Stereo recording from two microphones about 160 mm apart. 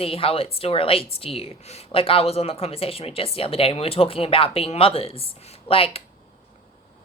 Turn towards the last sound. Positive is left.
turn(degrees=35)  # may be behind; listen again after turning